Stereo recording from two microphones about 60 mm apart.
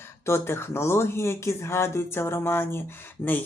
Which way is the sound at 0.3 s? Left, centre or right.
Left.